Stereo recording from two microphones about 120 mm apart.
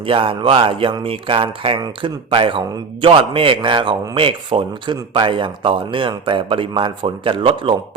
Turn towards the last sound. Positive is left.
turn(degrees=-45)  # may be behind; listen again after turning